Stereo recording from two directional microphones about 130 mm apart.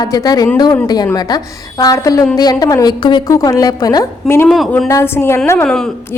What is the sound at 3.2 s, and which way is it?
A woman's voice, 25° left (ahead or behind).